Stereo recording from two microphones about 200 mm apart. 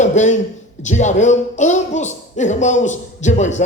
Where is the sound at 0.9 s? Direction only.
35° left (ahead or behind).